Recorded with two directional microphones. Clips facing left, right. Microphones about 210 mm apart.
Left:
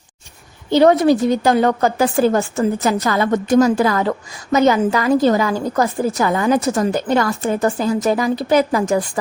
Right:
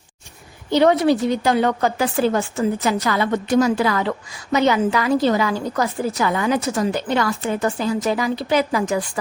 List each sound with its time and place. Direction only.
0.7 s a woman's voice: 40° left (ahead or behind)